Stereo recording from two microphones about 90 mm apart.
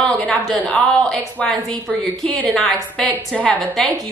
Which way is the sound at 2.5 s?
5° left (ahead or behind).